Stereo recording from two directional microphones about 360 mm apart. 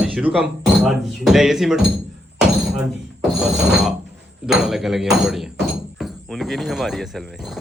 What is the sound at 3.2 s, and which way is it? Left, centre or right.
A man's voice, centre.